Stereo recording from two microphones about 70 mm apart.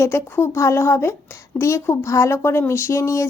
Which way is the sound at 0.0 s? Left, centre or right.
Left.